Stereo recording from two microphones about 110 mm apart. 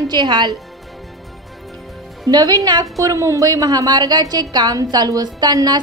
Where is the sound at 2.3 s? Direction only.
35° right (ahead or behind).